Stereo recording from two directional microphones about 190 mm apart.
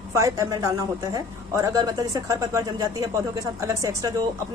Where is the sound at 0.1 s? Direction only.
15° right (ahead or behind).